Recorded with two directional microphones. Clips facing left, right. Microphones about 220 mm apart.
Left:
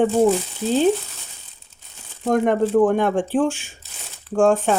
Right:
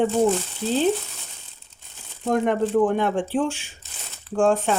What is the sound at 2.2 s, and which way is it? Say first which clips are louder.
Speech: left 3 dB; 45° left (ahead or behind).